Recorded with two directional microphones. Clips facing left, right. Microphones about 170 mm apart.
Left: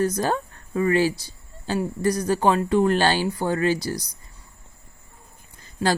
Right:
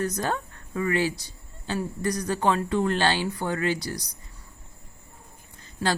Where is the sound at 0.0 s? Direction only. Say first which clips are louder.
Left 5 dB; 35° left (ahead or behind).